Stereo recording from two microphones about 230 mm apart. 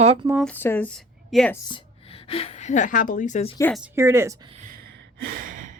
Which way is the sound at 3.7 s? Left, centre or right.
Centre.